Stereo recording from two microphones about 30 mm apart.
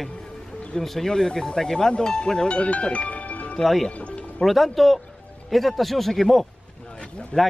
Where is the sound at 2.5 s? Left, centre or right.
Left.